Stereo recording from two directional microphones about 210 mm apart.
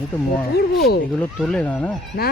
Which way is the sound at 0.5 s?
50° left (ahead or behind).